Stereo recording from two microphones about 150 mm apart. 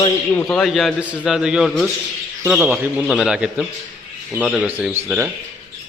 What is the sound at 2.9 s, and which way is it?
A man's voice, centre (ahead or behind).